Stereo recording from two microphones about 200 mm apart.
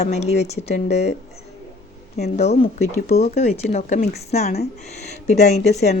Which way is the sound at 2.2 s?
35° left (ahead or behind).